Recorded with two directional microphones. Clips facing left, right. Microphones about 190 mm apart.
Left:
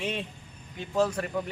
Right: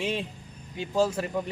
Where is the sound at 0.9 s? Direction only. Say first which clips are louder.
Right 1 dB; 25° right (ahead or behind).